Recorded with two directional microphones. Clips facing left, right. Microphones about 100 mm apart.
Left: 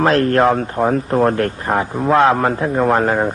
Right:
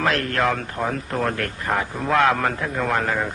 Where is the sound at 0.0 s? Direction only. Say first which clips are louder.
Left 8 dB; 35° left (ahead or behind).